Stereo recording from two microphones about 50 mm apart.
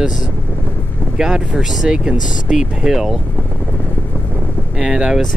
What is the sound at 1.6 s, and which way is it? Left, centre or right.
Speech, centre.